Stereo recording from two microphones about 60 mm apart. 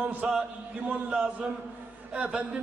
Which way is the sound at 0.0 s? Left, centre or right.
Right.